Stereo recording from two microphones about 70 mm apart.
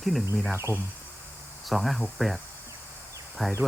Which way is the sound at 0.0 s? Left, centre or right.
Centre.